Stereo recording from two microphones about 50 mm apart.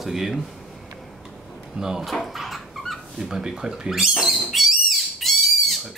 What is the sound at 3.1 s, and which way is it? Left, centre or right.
Speech, centre.